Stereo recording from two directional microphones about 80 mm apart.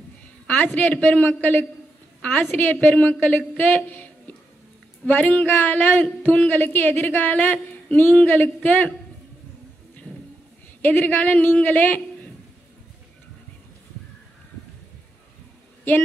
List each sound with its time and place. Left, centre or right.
0.7 s speech: left
10.8 s speech: left